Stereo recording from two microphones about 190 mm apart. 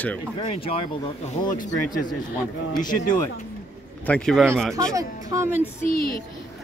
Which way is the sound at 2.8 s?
20° left (ahead or behind).